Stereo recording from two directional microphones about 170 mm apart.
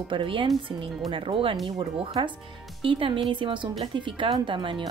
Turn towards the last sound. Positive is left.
turn(degrees=-30)  # may be behind; listen again after turning